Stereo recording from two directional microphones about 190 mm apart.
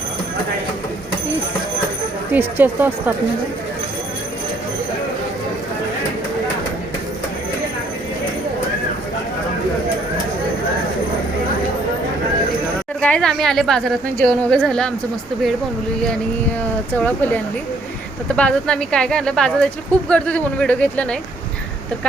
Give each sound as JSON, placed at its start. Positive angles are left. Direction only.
{"t": 2.3, "sound": "speech", "side_deg": -10}
{"t": 13.0, "sound": "a woman's voice", "side_deg": 5}
{"t": 16.9, "sound": "a woman's voice", "side_deg": 10}